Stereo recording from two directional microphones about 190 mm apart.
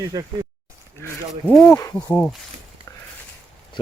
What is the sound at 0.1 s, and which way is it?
Speech, 20° right (ahead or behind).